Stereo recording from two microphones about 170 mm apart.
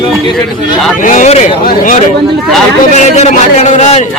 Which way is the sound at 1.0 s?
50° left (ahead or behind).